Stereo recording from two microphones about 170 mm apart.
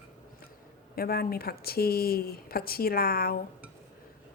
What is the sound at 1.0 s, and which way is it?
Speech, 65° left (ahead or behind).